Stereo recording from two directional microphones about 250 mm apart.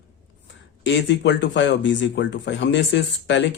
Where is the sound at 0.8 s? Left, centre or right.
Left.